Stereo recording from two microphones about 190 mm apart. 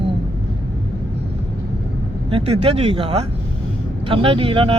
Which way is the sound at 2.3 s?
30° right (ahead or behind).